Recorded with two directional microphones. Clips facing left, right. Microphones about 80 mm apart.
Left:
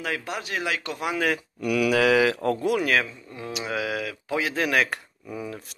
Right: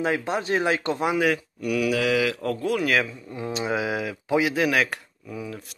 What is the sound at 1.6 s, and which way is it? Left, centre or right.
Mantra, left.